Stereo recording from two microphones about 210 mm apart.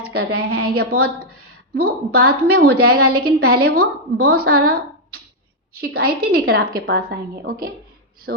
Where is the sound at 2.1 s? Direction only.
90° right.